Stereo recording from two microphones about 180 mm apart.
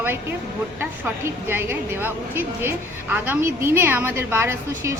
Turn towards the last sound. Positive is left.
turn(degrees=-15)  # may be behind; listen again after turning